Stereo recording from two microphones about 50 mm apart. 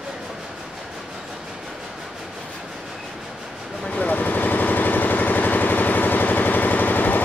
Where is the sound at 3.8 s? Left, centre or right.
Left.